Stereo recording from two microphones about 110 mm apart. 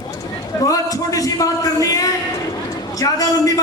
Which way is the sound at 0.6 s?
30° left (ahead or behind).